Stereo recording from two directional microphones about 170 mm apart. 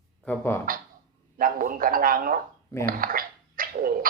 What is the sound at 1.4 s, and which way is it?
Speech, 55° right (ahead or behind).